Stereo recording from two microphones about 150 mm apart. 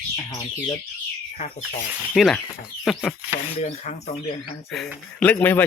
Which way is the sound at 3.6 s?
50° left (ahead or behind).